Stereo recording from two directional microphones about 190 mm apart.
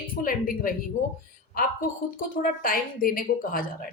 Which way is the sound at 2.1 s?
45° left (ahead or behind).